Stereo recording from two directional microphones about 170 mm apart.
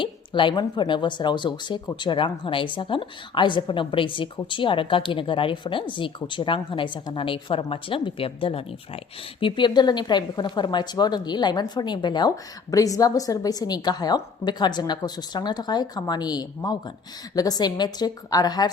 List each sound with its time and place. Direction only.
0.0 s speech: 30° left (ahead or behind)